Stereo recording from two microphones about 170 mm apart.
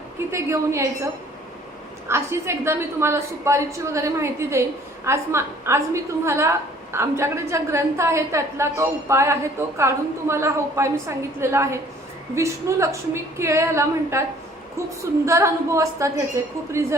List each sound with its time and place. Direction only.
0.3 s a woman's voice: 15° right (ahead or behind)
2.0 s a woman's voice: 15° right (ahead or behind)